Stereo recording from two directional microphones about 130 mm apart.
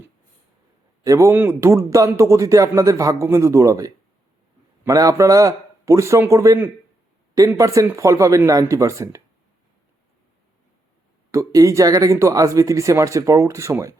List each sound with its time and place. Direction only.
1.0 s speech: 25° right (ahead or behind)
11.3 s speech: 25° right (ahead or behind)